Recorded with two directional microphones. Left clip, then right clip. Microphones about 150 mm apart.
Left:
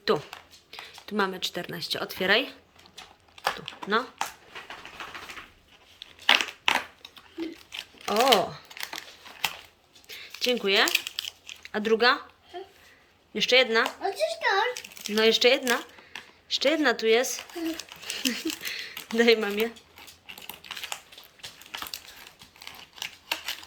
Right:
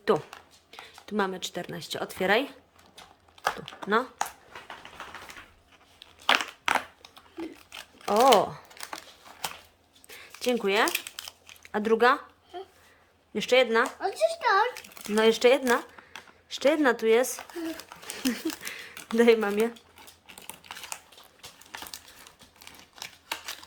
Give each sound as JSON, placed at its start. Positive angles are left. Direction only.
{"t": 0.0, "sound": "speech", "side_deg": -15}
{"t": 3.9, "sound": "speech", "side_deg": -25}
{"t": 6.0, "sound": "crushing", "side_deg": -15}
{"t": 7.3, "sound": "crumpling", "side_deg": -20}
{"t": 8.7, "sound": "typing", "side_deg": -15}
{"t": 10.1, "sound": "crumpling", "side_deg": -20}
{"t": 13.3, "sound": "speech", "side_deg": -25}
{"t": 14.8, "sound": "speech", "side_deg": -25}
{"t": 18.6, "sound": "a sound", "side_deg": -20}
{"t": 19.2, "sound": "speech", "side_deg": -25}
{"t": 20.2, "sound": "crumpling", "side_deg": -10}
{"t": 22.6, "sound": "computer keyboard", "side_deg": -10}